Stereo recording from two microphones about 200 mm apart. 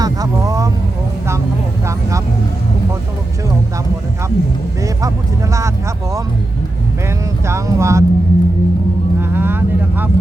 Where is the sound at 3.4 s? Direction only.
15° right (ahead or behind).